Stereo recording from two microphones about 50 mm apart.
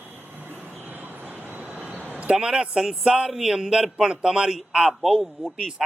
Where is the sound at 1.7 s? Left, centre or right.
Right.